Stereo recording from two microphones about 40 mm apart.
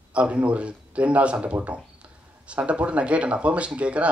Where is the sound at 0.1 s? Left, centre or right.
Right.